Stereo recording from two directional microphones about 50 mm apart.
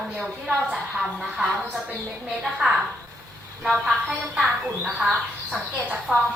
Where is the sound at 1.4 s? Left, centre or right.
Centre.